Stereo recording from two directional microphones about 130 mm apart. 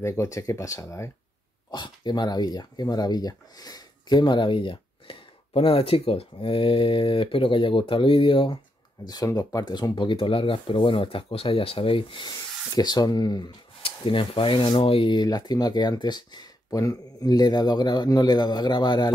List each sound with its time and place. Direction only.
0.0 s speech: 25° left (ahead or behind)
1.7 s speech: 35° left (ahead or behind)
9.0 s speech: 30° left (ahead or behind)